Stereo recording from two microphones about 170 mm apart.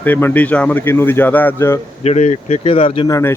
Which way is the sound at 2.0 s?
45° left (ahead or behind).